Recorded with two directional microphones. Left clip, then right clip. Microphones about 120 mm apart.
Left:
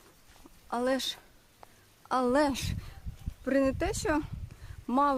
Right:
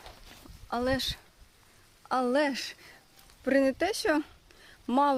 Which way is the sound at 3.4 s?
35° right (ahead or behind).